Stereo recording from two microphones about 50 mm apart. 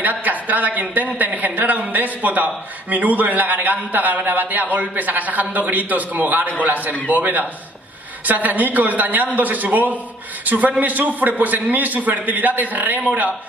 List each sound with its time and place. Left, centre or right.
0.0 s a man's voice: right